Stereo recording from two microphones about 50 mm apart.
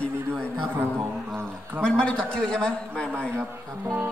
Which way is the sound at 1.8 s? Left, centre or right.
Centre.